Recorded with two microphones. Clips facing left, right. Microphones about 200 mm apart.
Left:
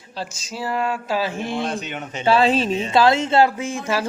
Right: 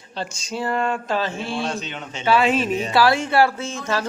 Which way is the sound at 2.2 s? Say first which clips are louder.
Left 1 dB; 30° left (ahead or behind).